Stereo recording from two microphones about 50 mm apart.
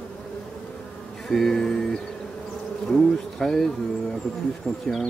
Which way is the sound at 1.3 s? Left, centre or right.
Centre.